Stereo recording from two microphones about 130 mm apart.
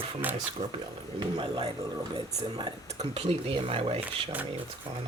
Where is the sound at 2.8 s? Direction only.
55° right (ahead or behind).